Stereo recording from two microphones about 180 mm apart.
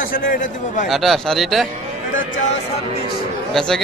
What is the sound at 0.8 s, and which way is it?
Speech, centre (ahead or behind).